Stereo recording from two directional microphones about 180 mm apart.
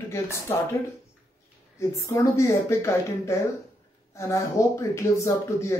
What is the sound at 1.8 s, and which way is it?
Speech, 15° left (ahead or behind).